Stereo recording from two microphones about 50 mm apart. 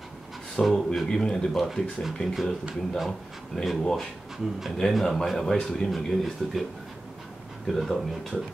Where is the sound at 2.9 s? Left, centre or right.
Centre.